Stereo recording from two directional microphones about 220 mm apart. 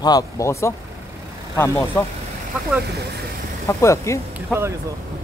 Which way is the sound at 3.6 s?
15° left (ahead or behind).